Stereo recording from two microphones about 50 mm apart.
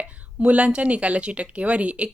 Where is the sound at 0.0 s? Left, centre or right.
Right.